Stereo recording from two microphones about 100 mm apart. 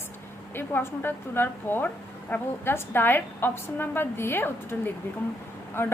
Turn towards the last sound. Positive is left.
turn(degrees=25)  # may be behind; listen again after turning